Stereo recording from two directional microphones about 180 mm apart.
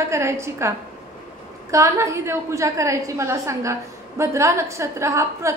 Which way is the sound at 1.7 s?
15° right (ahead or behind).